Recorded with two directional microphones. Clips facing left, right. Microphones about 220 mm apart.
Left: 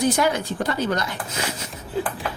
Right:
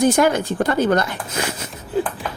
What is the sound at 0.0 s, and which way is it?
A woman's voice, 50° right (ahead or behind).